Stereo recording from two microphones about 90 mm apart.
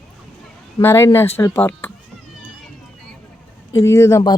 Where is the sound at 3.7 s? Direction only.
30° left (ahead or behind).